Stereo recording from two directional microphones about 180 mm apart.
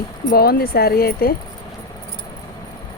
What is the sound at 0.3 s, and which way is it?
Speech, 55° left (ahead or behind).